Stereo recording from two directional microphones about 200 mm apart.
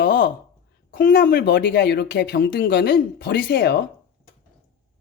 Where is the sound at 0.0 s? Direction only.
45° left (ahead or behind).